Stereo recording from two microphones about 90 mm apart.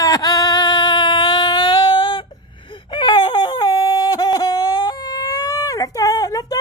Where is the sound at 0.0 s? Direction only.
40° left (ahead or behind).